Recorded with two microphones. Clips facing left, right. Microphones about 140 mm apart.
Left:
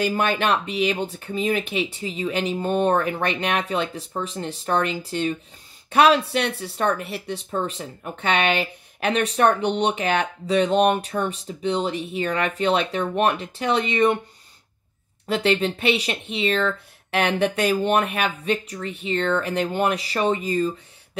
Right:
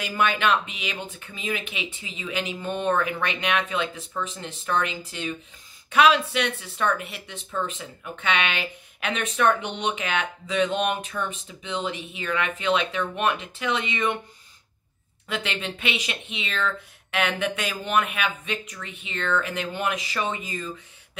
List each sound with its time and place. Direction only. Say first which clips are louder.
0.0 s speech: left 2 dB; 40° left (ahead or behind)
15.2 s speech: left 9 dB; 35° left (ahead or behind)